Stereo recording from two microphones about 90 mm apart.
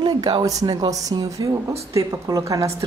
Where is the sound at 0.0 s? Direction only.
55° right (ahead or behind).